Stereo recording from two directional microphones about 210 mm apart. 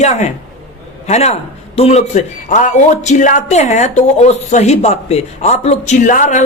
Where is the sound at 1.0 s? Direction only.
30° left (ahead or behind).